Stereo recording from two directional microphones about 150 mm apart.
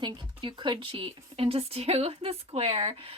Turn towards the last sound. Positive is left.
turn(degrees=-40)  # may be behind; listen again after turning